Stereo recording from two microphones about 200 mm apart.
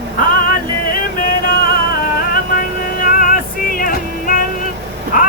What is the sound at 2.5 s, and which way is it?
Music, 45° left (ahead or behind).